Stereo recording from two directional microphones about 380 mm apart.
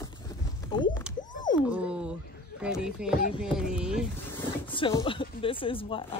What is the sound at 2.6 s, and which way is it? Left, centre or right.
Speech, centre.